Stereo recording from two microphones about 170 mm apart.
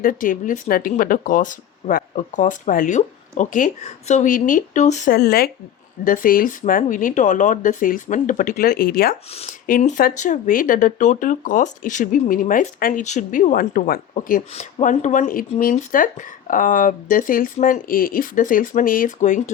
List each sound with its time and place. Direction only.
0.0 s speech: 55° left (ahead or behind)
5.1 s speech: 65° left (ahead or behind)
9.3 s speech: 35° left (ahead or behind)
9.6 s speech: 50° left (ahead or behind)